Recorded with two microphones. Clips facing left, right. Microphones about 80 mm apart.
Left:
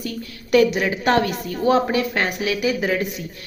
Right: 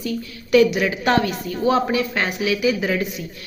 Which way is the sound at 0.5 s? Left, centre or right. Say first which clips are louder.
Right 1 dB; left.